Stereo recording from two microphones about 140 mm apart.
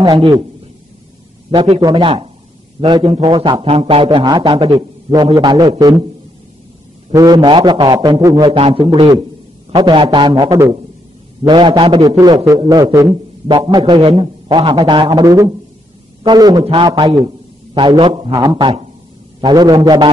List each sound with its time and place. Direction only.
0.0 s a man's voice: 35° right (ahead or behind)
1.5 s a man's voice: 45° right (ahead or behind)
1.8 s a man's voice: 30° right (ahead or behind)
7.1 s a man's voice: 25° right (ahead or behind)
8.5 s a man's voice: 40° right (ahead or behind)
16.6 s a man's voice: 40° right (ahead or behind)
18.3 s a man's voice: 30° right (ahead or behind)